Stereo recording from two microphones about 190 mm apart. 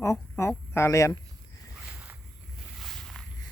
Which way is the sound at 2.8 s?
Centre (ahead or behind).